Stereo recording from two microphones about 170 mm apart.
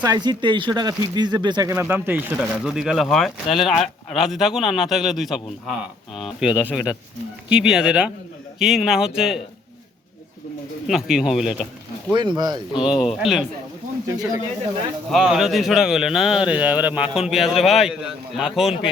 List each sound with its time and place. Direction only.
0.0 s speech: 25° right (ahead or behind); by 9.4 s 5° right (ahead or behind)
10.8 s speech: 5° right (ahead or behind)
12.1 s speech: 25° right (ahead or behind)
12.7 s speech: 30° left (ahead or behind)
13.0 s speech: 5° right (ahead or behind)
15.1 s speech: centre (ahead or behind)